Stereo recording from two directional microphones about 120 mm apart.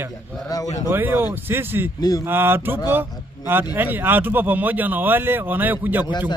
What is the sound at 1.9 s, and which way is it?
Speech, 30° left (ahead or behind).